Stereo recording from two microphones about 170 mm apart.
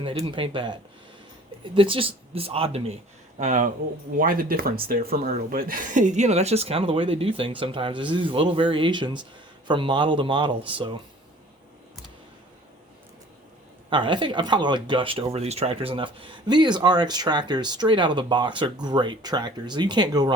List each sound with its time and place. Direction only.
0.2 s speech: 30° right (ahead or behind); by 3.7 s 45° right (ahead or behind)
4.2 s speech: 55° right (ahead or behind); by 10.9 s 30° right (ahead or behind)
13.9 s speech: 30° right (ahead or behind)